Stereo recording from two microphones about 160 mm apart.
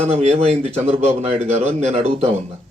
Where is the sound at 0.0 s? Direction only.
40° right (ahead or behind).